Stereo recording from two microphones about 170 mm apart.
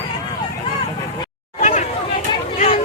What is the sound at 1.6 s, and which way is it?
Chatter, 50° left (ahead or behind).